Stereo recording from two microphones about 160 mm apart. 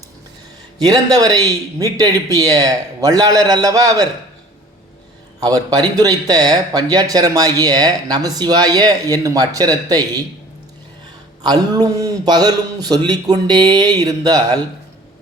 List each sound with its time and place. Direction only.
0.8 s speech: 25° right (ahead or behind)
5.4 s speech: 25° right (ahead or behind)
11.4 s speech: 25° right (ahead or behind)